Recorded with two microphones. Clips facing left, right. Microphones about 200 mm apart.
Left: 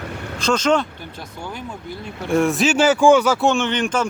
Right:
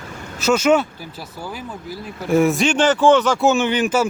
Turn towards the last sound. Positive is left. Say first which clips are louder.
# right 3 dB
turn(degrees=-5)  # may be behind; listen again after turning